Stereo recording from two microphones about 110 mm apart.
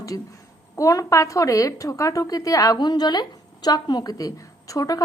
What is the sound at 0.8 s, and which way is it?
A woman's voice, 30° left (ahead or behind).